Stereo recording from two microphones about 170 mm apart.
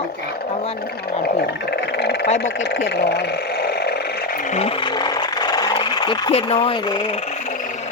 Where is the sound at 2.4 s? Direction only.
80° left.